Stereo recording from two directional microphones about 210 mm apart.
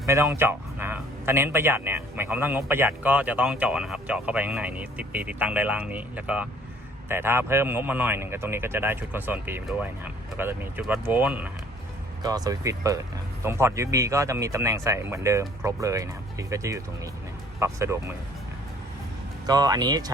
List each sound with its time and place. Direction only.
0.0 s speech: 15° right (ahead or behind)
19.5 s speech: 20° right (ahead or behind)